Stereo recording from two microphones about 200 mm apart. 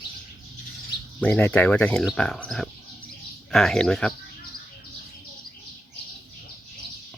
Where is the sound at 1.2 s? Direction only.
5° left (ahead or behind).